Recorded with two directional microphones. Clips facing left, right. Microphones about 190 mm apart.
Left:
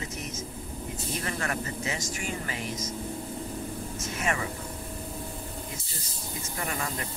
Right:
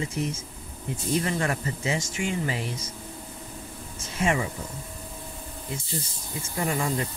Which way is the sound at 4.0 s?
30° right (ahead or behind).